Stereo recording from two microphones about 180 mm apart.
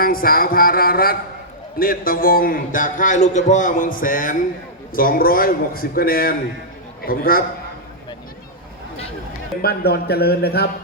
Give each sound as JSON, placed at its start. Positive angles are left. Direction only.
{"t": 0.0, "sound": "a man's voice", "side_deg": 55}
{"t": 9.6, "sound": "speech", "side_deg": 60}